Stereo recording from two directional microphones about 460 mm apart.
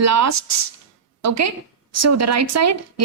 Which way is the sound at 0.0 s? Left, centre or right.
Right.